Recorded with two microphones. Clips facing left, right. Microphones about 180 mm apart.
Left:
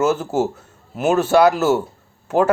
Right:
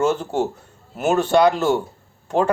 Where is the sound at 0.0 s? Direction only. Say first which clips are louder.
Left 2 dB; 5° left (ahead or behind).